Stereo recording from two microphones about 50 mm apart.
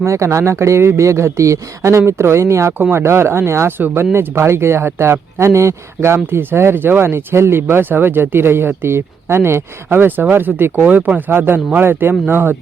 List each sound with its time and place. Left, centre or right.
0.0 s speech: right
2.9 s speech: right
6.3 s speech: right
9.9 s speech: right